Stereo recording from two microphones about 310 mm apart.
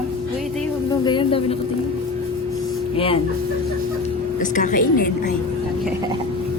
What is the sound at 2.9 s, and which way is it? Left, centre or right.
Speech, centre.